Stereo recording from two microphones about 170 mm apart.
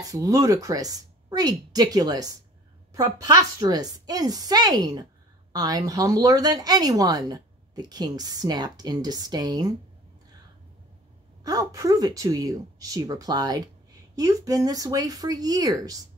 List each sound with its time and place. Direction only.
0.1 s speech: 20° right (ahead or behind)
11.4 s speech: 20° right (ahead or behind)